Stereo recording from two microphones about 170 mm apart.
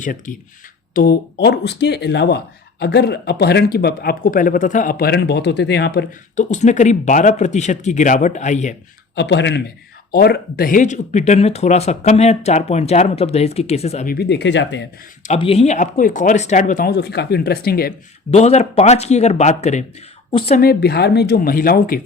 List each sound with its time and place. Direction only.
0.0 s speech: 50° left (ahead or behind)
0.9 s speech: 65° left (ahead or behind)
6.3 s speech: 45° left (ahead or behind)
9.1 s speech: 90° left; by 14.1 s 40° left (ahead or behind)
14.1 s speech: 80° left
15.3 s speech: 35° left (ahead or behind)
16.9 s speech: 75° left (ahead or behind)
18.3 s speech: 40° left (ahead or behind)
20.6 s speech: 65° left (ahead or behind)